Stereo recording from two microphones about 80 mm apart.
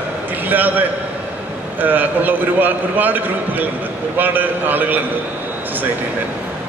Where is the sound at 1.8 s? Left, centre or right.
Right.